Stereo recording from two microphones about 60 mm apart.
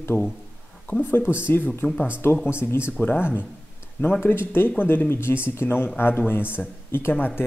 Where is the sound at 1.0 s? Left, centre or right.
Left.